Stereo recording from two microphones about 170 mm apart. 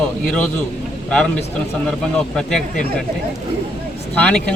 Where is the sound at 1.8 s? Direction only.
5° left (ahead or behind).